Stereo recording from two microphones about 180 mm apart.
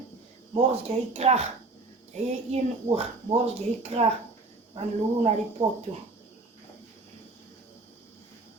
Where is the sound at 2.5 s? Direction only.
35° right (ahead or behind).